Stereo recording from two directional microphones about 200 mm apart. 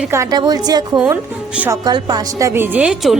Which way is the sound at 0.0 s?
15° right (ahead or behind).